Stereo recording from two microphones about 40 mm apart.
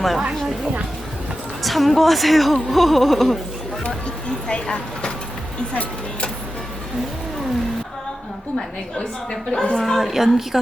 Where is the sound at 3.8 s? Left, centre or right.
Left.